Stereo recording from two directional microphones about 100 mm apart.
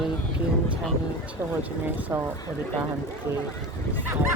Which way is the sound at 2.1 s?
25° right (ahead or behind).